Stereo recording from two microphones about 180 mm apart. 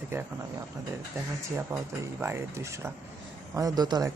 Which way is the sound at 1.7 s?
15° right (ahead or behind).